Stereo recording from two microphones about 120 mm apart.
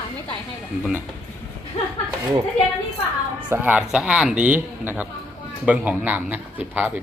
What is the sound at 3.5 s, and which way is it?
A man's voice, 15° right (ahead or behind).